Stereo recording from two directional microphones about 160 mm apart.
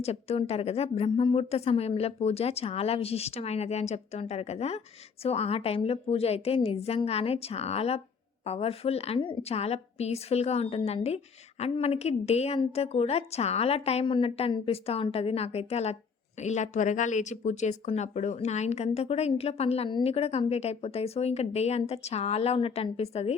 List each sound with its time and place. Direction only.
0.0 s speech: 40° left (ahead or behind)